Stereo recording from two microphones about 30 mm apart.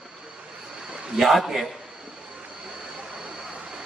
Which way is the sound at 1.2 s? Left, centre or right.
Centre.